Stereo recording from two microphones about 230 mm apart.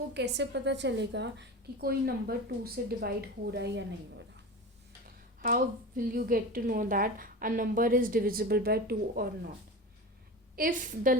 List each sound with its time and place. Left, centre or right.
0.1 s a woman's voice: right
5.4 s a woman's voice: right
10.5 s a woman's voice: right